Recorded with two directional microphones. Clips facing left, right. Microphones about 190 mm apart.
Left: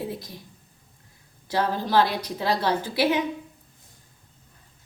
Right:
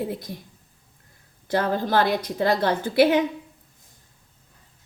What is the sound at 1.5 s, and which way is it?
A woman's voice, 50° right (ahead or behind).